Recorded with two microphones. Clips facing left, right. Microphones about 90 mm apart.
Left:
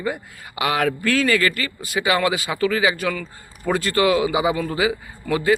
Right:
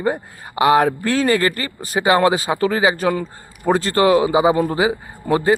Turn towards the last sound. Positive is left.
turn(degrees=-30)  # may be behind; listen again after turning